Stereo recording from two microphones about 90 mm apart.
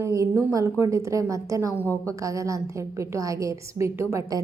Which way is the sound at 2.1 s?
35° right (ahead or behind).